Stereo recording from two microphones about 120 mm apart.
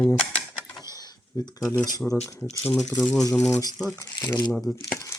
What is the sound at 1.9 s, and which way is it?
Speech, 30° left (ahead or behind).